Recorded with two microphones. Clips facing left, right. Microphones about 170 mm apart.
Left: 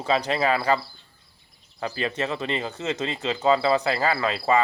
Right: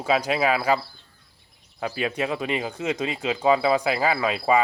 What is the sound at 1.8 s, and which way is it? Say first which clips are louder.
Speech: right 1 dB; 5° right (ahead or behind).